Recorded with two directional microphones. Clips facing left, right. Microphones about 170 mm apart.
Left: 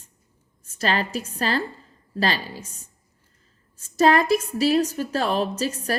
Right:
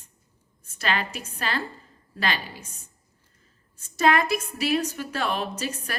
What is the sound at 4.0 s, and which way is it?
A woman's voice, 35° left (ahead or behind).